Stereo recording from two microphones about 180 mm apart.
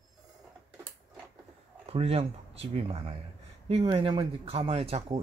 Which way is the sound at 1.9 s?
35° right (ahead or behind).